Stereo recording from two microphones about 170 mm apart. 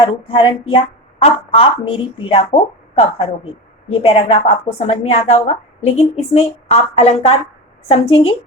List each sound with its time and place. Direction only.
0.0 s a woman's voice: 30° left (ahead or behind)